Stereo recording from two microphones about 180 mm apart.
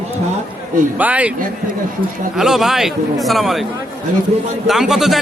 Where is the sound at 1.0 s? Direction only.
10° right (ahead or behind).